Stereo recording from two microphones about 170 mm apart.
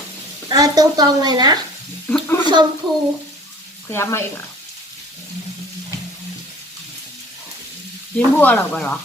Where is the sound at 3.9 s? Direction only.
15° left (ahead or behind).